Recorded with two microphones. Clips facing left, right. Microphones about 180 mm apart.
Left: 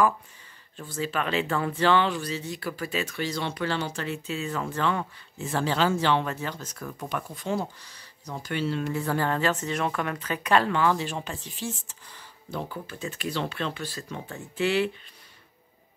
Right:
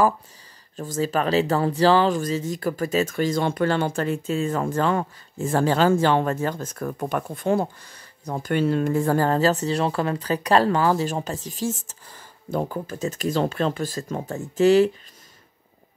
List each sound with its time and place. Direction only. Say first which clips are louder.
0.7 s speech: right 6 dB; 40° right (ahead or behind)